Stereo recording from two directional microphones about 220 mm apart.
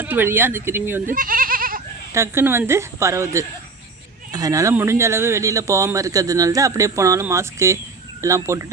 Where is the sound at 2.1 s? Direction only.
10° right (ahead or behind).